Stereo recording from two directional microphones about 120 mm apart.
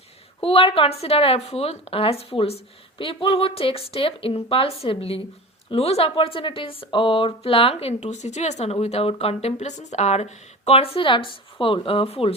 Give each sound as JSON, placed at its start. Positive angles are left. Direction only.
{"t": 0.4, "sound": "a woman's voice", "side_deg": 50}